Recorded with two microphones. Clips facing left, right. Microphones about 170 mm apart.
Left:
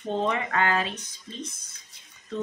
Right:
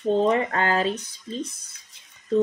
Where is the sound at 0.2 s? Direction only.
35° right (ahead or behind).